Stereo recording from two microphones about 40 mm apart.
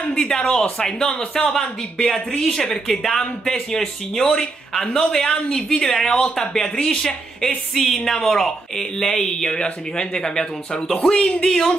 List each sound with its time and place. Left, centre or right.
0.1 s a woman's voice: centre